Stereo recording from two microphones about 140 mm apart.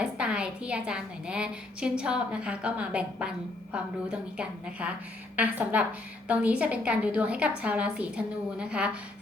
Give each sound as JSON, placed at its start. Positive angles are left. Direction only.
{"t": 0.0, "sound": "a woman's voice", "side_deg": -5}